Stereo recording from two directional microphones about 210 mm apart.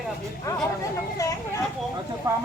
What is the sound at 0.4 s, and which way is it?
Vehicle, 15° left (ahead or behind).